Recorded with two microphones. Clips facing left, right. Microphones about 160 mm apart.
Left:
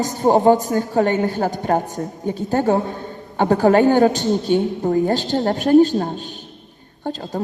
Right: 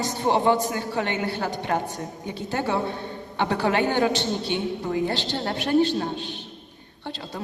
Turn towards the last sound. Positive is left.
turn(degrees=45)  # may be behind; listen again after turning